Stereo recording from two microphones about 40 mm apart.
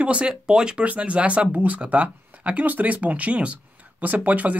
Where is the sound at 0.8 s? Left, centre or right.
Right.